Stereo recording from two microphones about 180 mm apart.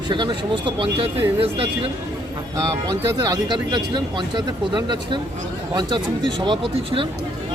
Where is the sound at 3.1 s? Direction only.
20° right (ahead or behind).